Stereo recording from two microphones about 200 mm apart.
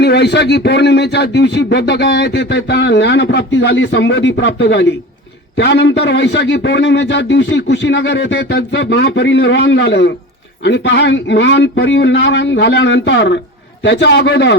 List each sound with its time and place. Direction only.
0.0 s a man's voice: 55° left (ahead or behind)